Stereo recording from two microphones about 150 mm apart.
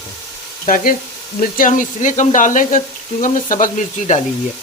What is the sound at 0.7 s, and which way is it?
Speech, 80° left.